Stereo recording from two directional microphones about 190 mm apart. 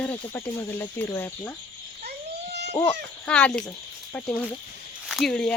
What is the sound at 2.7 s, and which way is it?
Speech, 25° left (ahead or behind).